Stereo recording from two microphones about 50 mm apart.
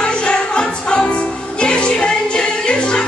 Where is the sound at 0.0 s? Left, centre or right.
Centre.